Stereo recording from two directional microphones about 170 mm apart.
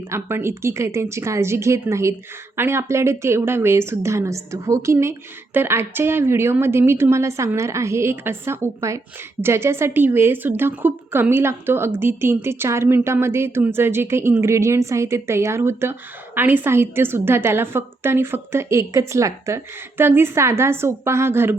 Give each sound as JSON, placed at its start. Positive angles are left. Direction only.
{"t": 0.1, "sound": "a woman's voice", "side_deg": -15}